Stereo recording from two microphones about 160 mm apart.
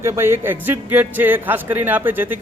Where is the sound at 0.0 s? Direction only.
15° right (ahead or behind).